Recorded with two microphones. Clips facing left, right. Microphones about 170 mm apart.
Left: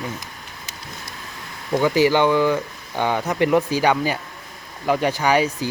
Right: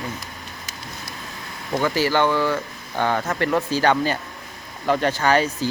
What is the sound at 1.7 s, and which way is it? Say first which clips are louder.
Speech: left 3 dB; 15° left (ahead or behind).